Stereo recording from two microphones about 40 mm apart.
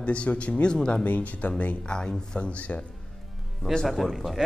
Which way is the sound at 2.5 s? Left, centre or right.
Left.